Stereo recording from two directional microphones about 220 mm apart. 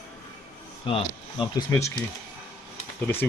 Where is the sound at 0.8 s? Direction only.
25° left (ahead or behind).